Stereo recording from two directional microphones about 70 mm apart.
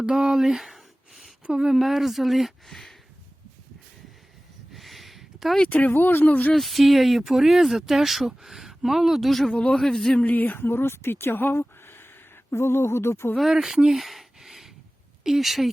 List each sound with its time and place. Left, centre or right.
0.0 s a sound: centre
1.5 s speech: centre
1.7 s speech: centre
4.7 s a sound: centre
5.6 s speech: left
6.5 s speech: centre
9.5 s speech: centre
10.2 s speech: left
13.3 s speech: centre